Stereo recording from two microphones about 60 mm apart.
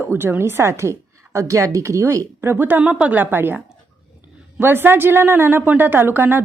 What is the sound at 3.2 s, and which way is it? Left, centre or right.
Speech, right.